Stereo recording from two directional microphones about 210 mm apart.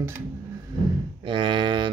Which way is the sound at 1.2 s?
25° right (ahead or behind).